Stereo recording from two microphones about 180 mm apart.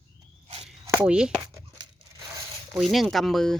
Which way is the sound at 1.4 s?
20° right (ahead or behind).